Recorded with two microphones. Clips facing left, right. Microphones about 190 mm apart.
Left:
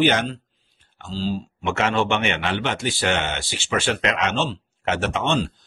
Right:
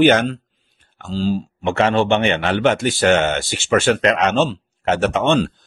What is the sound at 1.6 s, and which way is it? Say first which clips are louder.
A man's voice: right 5 dB; 35° right (ahead or behind).